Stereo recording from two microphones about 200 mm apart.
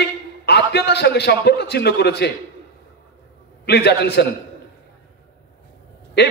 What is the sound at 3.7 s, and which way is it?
Speech, 55° left (ahead or behind).